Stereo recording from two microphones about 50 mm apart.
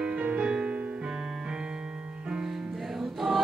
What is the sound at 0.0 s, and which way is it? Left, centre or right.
Music, right.